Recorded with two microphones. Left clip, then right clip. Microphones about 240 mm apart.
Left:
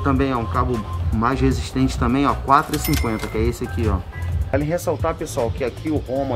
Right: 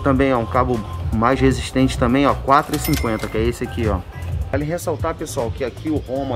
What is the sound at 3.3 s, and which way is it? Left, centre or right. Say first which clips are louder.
Speech: right 2 dB; centre.